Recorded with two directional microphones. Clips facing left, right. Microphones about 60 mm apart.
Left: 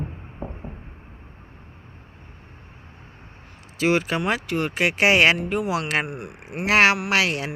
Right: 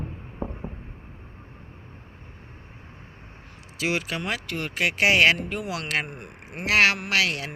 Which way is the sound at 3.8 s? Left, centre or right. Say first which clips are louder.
Left 6 dB; left.